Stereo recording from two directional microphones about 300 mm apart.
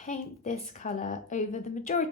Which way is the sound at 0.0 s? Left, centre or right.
Left.